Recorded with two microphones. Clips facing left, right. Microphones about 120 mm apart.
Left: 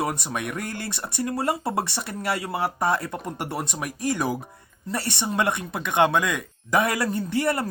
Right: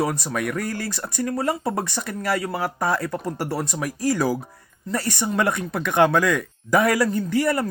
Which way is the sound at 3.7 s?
20° left (ahead or behind).